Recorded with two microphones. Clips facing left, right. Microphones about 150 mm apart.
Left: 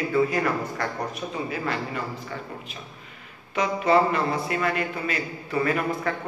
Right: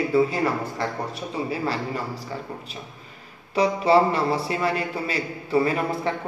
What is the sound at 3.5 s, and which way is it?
A woman's voice, 35° right (ahead or behind).